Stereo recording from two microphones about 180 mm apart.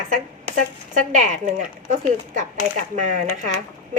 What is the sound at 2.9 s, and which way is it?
Speech, 40° right (ahead or behind).